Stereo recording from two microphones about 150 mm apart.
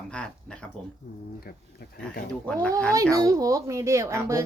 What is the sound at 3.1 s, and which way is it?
A child's voice, 25° right (ahead or behind).